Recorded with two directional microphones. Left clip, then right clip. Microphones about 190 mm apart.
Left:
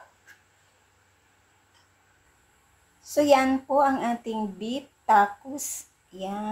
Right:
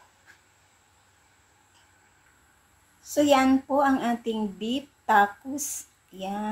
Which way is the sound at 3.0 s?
Centre (ahead or behind).